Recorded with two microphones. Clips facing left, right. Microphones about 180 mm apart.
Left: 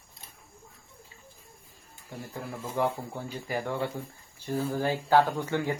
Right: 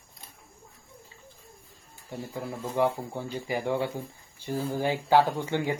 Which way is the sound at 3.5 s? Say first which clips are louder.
Right 2 dB; 15° right (ahead or behind).